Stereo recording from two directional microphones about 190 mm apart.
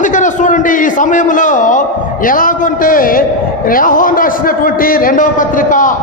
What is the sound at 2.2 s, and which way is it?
A man's voice, 45° left (ahead or behind).